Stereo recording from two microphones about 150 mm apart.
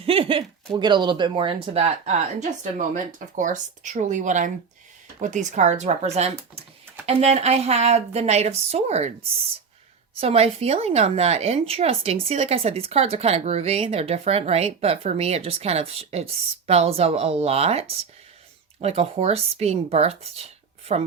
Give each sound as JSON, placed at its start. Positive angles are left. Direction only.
{"t": 0.0, "sound": "a woman's voice", "side_deg": -40}
{"t": 10.2, "sound": "a woman's voice", "side_deg": -40}